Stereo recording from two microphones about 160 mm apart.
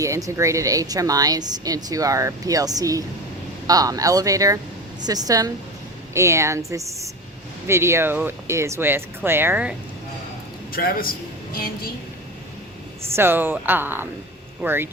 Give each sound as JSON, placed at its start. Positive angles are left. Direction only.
{"t": 0.0, "sound": "a woman's voice", "side_deg": -20}
{"t": 10.7, "sound": "a man's voice", "side_deg": 70}
{"t": 13.1, "sound": "speech", "side_deg": -15}